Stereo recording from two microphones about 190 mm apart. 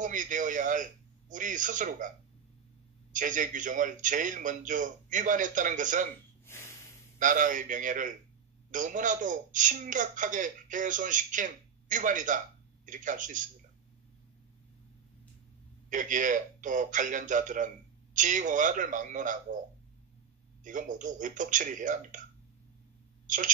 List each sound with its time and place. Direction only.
0.0 s a man's voice: 45° right (ahead or behind)
6.4 s snort: 10° left (ahead or behind)
7.2 s a man's voice: 45° right (ahead or behind)
15.9 s a man's voice: 45° right (ahead or behind)
20.6 s a man's voice: 40° right (ahead or behind)
23.2 s a sound: 45° right (ahead or behind)